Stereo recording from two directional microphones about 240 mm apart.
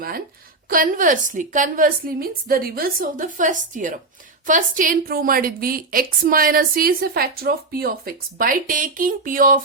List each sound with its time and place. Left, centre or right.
0.7 s a woman's voice: right